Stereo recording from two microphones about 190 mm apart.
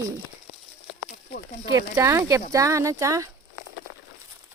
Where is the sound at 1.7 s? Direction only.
15° right (ahead or behind).